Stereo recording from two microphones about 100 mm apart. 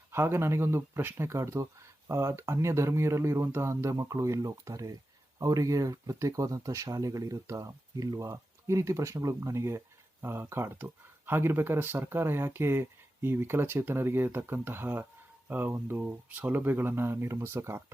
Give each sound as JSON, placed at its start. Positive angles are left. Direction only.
{"t": 0.1, "sound": "speech", "side_deg": -25}